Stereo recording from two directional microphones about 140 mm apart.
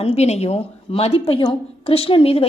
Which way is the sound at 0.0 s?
50° left (ahead or behind).